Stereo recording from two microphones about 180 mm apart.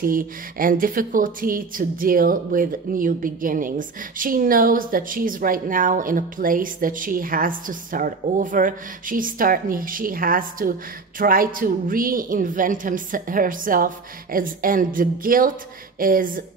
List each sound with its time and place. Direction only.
0.0 s speech: 50° right (ahead or behind)